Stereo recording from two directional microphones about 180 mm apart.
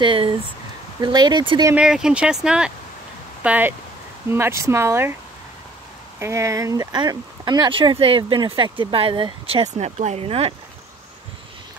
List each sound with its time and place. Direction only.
0.0 s speech: 30° right (ahead or behind)
1.7 s speech: 5° right (ahead or behind)
6.1 s speech: 15° right (ahead or behind); by 10.5 s 35° right (ahead or behind)